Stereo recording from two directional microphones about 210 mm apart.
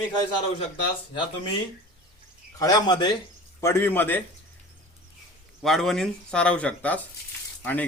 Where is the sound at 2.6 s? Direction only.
20° left (ahead or behind).